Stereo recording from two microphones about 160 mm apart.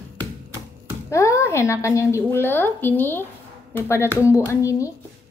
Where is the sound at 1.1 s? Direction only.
20° left (ahead or behind).